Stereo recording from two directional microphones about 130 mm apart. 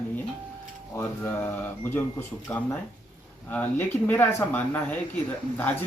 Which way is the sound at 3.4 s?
10° left (ahead or behind).